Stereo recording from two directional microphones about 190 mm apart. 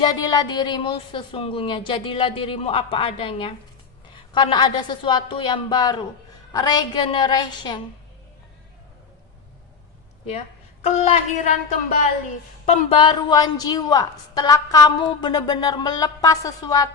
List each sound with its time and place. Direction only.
0.0 s a woman's voice: 20° left (ahead or behind)
10.8 s speech: 35° left (ahead or behind)
13.0 s a woman's voice: 25° left (ahead or behind)